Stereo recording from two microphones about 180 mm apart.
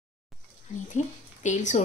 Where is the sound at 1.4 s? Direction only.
40° left (ahead or behind).